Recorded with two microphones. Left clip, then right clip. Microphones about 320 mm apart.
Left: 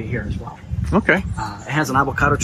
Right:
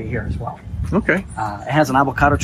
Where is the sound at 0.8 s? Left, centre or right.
Centre.